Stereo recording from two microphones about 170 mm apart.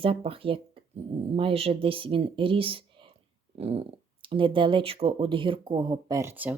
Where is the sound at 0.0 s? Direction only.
35° right (ahead or behind).